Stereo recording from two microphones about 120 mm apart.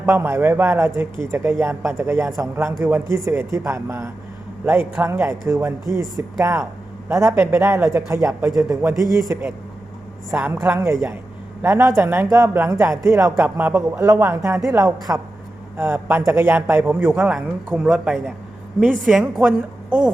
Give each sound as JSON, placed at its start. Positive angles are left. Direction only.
{"t": 0.0, "sound": "a woman's voice", "side_deg": -20}
{"t": 10.6, "sound": "a woman's voice", "side_deg": -25}
{"t": 15.8, "sound": "speech", "side_deg": -20}
{"t": 17.0, "sound": "a woman's voice", "side_deg": -5}